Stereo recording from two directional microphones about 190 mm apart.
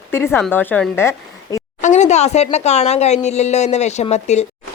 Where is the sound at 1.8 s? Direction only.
40° left (ahead or behind).